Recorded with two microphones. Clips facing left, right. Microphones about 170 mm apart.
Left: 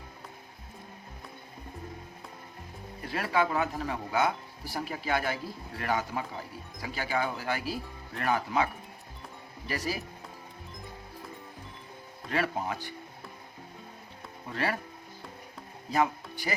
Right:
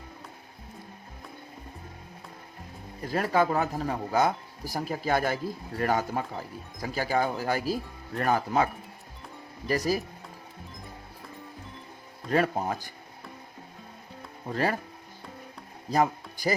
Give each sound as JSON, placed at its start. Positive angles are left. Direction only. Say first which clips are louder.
{"t": 3.1, "sound": "speech", "louder": "right 4 dB", "side_deg": -40}
{"t": 12.3, "sound": "speech", "louder": "right 5 dB", "side_deg": -40}
{"t": 14.5, "sound": "speech", "louder": "right 4 dB", "side_deg": -40}
{"t": 15.9, "sound": "speech", "louder": "right 3 dB", "side_deg": -40}